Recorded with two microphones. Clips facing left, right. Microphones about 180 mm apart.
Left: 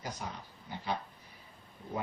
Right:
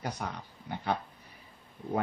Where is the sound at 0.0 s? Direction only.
65° right (ahead or behind).